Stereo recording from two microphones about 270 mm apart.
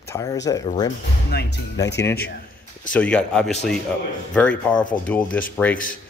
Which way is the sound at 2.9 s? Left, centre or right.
Centre.